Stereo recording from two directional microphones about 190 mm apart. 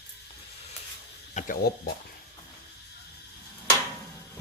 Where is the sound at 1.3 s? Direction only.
40° left (ahead or behind).